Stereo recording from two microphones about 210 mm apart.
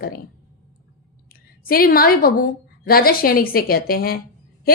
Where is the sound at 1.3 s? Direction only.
45° left (ahead or behind).